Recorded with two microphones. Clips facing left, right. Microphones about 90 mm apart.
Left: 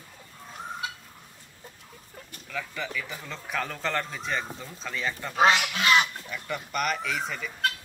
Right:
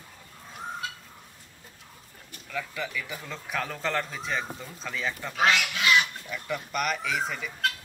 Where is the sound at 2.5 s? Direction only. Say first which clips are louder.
Even; centre (ahead or behind).